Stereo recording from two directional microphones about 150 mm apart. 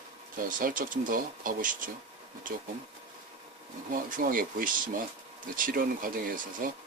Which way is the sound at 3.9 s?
65° right (ahead or behind).